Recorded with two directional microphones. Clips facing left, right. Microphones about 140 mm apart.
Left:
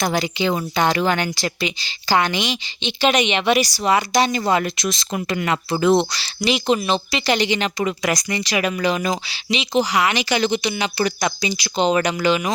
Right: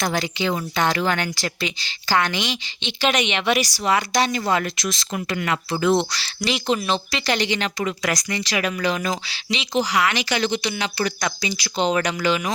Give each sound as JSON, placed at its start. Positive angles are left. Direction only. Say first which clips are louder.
{"t": 0.0, "sound": "a woman's voice", "louder": "left 3 dB", "side_deg": 10}
{"t": 0.4, "sound": "a woman's voice", "louder": "left 2 dB", "side_deg": 20}